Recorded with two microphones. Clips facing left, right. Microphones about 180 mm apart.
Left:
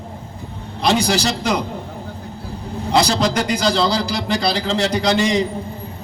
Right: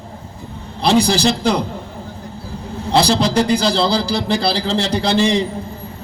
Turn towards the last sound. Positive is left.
turn(degrees=-30)  # may be behind; listen again after turning